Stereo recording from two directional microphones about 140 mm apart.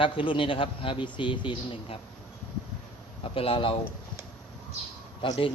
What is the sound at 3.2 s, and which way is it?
Speech, 40° left (ahead or behind).